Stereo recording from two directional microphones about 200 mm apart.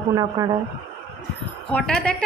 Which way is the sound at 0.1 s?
20° right (ahead or behind).